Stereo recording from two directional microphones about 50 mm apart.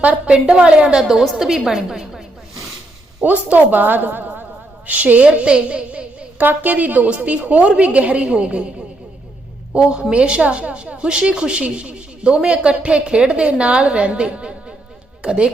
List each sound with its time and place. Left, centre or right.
0.0 s a woman's voice: centre
3.2 s a woman's voice: right
6.4 s a woman's voice: right
9.7 s a woman's voice: centre